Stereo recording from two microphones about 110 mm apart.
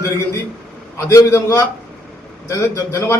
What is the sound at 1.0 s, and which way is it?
A man's voice, 25° left (ahead or behind).